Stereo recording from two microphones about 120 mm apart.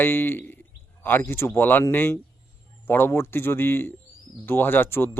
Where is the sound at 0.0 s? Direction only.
15° left (ahead or behind).